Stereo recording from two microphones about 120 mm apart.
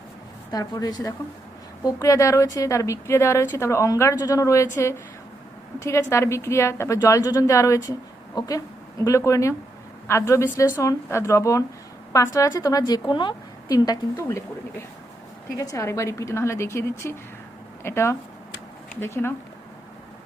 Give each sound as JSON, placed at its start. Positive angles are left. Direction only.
{"t": 0.5, "sound": "a woman's voice", "side_deg": 30}
{"t": 14.2, "sound": "a woman's voice", "side_deg": 20}